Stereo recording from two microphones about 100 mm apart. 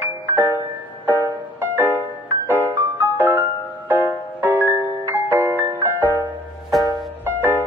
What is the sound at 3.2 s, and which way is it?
Music, 20° right (ahead or behind).